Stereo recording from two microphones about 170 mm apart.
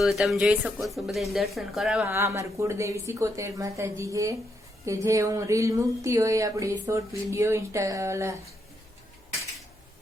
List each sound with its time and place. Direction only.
0.0 s speech: centre (ahead or behind); by 8.4 s 15° right (ahead or behind)